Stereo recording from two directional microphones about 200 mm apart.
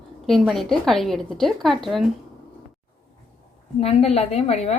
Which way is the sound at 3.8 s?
30° left (ahead or behind).